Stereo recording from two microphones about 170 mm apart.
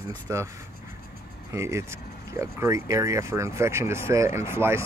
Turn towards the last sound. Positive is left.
turn(degrees=-15)  # may be behind; listen again after turning